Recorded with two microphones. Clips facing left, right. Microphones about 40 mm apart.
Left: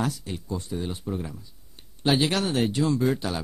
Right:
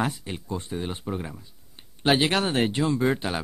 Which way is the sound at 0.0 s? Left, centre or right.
Right.